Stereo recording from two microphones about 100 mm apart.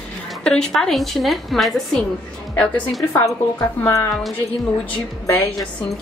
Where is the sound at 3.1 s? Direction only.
30° left (ahead or behind).